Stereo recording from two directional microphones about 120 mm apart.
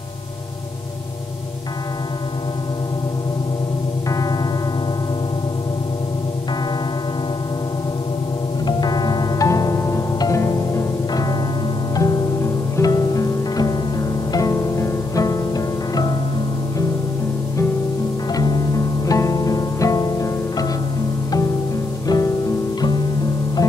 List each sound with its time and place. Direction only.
4.1 s music: 30° left (ahead or behind)
8.6 s music: 35° left (ahead or behind)
18.3 s music: 35° left (ahead or behind)
22.0 s music: 30° left (ahead or behind)